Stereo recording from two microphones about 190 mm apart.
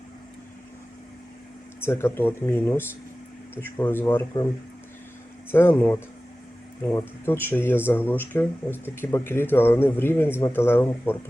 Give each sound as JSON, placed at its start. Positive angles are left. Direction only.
{"t": 1.8, "sound": "speech", "side_deg": 15}
{"t": 5.5, "sound": "speech", "side_deg": 10}